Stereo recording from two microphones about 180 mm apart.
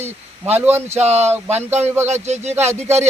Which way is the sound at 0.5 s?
10° right (ahead or behind).